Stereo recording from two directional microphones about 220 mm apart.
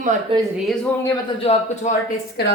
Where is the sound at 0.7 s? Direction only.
10° left (ahead or behind).